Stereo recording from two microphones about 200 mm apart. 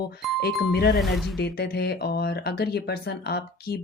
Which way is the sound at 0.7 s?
50° left (ahead or behind).